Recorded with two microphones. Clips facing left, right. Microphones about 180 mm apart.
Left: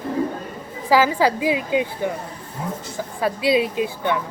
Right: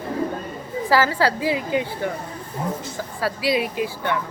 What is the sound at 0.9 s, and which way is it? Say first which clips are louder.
A woman's voice: left 2 dB; 15° left (ahead or behind).